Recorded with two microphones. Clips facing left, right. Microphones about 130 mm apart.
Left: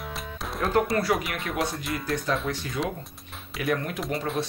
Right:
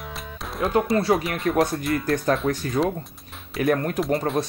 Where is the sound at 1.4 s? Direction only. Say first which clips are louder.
Right 8 dB; 45° right (ahead or behind).